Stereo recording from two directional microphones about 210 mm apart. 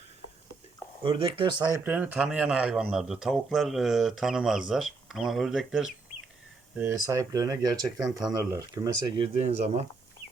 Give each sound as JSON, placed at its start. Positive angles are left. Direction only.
{"t": 1.0, "sound": "speech", "side_deg": -25}
{"t": 1.8, "sound": "speech", "side_deg": -5}